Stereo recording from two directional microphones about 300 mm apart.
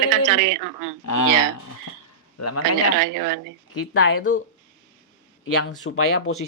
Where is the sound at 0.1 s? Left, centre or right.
Right.